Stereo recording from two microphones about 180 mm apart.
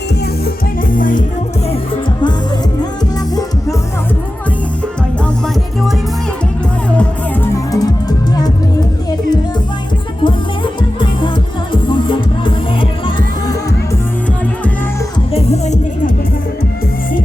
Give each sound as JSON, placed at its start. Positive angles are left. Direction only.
{"t": 0.4, "sound": "music", "side_deg": 50}
{"t": 7.4, "sound": "music", "side_deg": 20}
{"t": 11.7, "sound": "music", "side_deg": 25}
{"t": 15.3, "sound": "music", "side_deg": 35}